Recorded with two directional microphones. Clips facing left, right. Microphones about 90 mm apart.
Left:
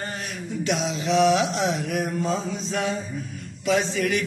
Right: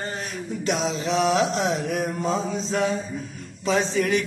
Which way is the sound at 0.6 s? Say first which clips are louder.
Even; 40° right (ahead or behind).